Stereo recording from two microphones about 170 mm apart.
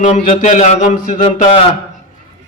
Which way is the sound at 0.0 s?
50° left (ahead or behind).